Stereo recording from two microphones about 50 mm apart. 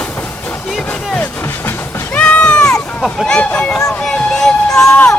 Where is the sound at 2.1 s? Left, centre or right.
Left.